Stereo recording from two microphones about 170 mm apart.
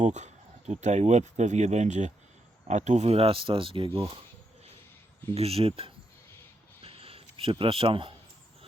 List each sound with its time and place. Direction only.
0.0 s speech: 45° right (ahead or behind)
5.3 s speech: 35° right (ahead or behind)
6.8 s a sound: 35° right (ahead or behind)